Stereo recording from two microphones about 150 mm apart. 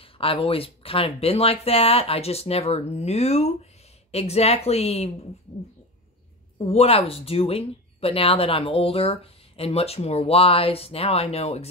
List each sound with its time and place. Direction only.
0.0 s a woman's voice: 40° left (ahead or behind)
6.6 s speech: 45° left (ahead or behind)